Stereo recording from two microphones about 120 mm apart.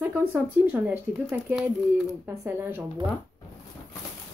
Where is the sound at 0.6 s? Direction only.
15° right (ahead or behind).